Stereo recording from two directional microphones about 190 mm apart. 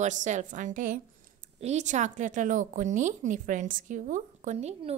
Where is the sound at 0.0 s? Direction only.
40° right (ahead or behind).